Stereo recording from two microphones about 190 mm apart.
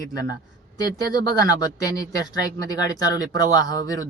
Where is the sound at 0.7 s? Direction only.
20° left (ahead or behind).